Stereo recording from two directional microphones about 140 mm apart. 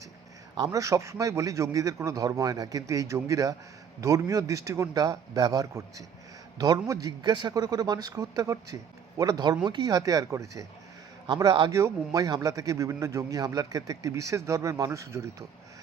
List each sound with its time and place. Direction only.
0.5 s a man's voice: 25° right (ahead or behind)